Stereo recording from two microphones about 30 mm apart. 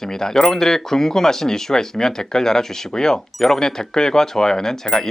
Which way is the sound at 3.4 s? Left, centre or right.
Centre.